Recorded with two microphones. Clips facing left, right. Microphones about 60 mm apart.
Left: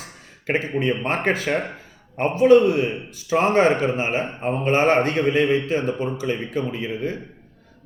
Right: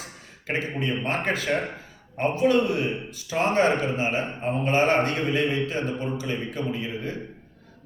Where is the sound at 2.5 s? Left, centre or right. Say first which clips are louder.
Left 9 dB; left.